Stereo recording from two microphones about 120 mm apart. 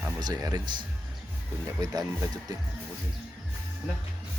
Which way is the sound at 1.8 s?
30° right (ahead or behind).